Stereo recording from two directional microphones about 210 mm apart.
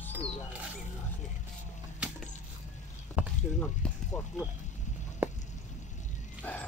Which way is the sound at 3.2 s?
5° right (ahead or behind).